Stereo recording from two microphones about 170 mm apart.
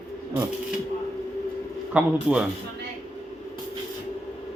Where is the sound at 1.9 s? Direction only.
5° right (ahead or behind).